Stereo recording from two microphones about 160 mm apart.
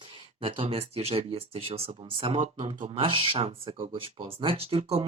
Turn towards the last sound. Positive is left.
turn(degrees=-35)  # may be behind; listen again after turning